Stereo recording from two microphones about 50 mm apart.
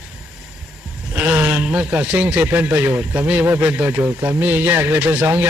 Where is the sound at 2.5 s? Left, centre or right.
Right.